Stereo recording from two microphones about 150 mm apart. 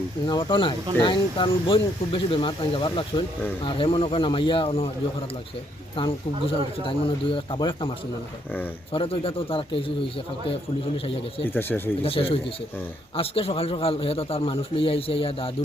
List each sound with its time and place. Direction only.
0.3 s a man's voice: 30° left (ahead or behind)
6.0 s a man's voice: 35° left (ahead or behind)
11.5 s speech: 15° left (ahead or behind)
12.0 s a man's voice: 40° left (ahead or behind)